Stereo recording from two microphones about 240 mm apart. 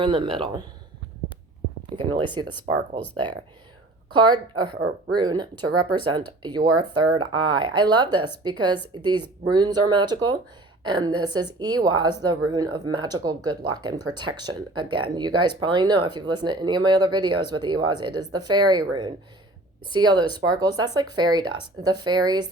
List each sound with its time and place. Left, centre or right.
0.0 s speech: right
2.0 s speech: centre
4.1 s speech: centre